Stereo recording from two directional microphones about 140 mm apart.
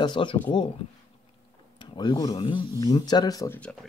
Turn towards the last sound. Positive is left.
turn(degrees=25)  # may be behind; listen again after turning